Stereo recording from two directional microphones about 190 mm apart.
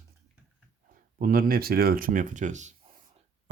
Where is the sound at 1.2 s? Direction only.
50° right (ahead or behind).